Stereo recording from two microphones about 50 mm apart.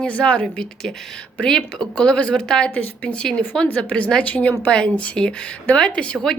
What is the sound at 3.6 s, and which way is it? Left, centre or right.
Speech, left.